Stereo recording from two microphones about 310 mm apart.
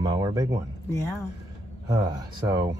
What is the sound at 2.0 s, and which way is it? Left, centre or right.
Speech, centre.